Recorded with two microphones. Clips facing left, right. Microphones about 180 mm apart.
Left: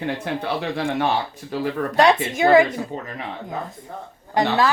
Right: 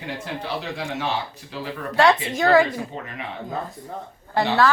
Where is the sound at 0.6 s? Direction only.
60° left (ahead or behind).